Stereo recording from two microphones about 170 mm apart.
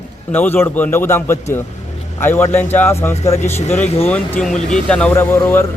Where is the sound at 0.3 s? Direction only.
10° left (ahead or behind).